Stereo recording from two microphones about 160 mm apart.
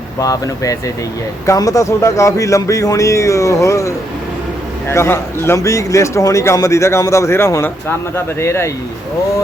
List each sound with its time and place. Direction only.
0.2 s a man's voice: 20° left (ahead or behind)